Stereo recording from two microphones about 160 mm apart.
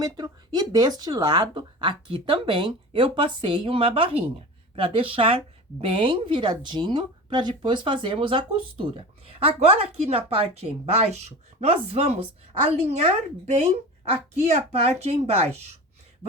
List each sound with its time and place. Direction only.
0.0 s speech: 25° right (ahead or behind)